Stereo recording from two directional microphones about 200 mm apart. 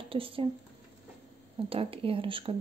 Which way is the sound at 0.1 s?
25° right (ahead or behind).